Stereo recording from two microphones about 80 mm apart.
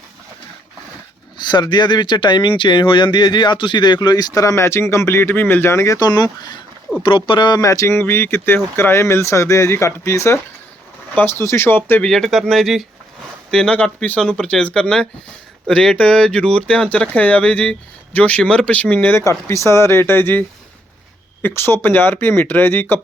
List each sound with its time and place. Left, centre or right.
1.4 s speech: left
6.0 s speech: left
7.3 s speech: left
7.6 s speech: left
12.0 s speech: centre
13.5 s speech: centre
19.2 s speech: left
21.4 s speech: left